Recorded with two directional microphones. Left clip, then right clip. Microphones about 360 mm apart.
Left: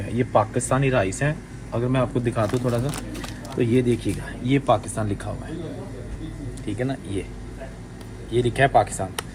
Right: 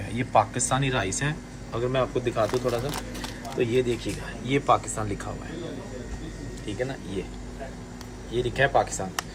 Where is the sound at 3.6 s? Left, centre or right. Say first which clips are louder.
Left 3 dB; centre.